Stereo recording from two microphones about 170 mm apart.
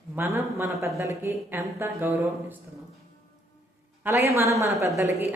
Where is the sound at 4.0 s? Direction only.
15° right (ahead or behind).